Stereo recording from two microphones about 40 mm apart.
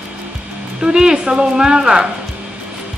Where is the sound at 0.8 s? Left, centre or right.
Centre.